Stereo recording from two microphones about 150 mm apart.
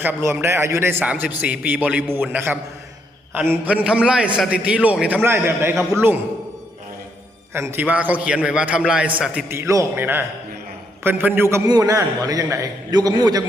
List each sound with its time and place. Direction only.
0.3 s a man's voice: 15° right (ahead or behind)
7.5 s a man's voice: 15° right (ahead or behind)
11.5 s a man's voice: 25° right (ahead or behind)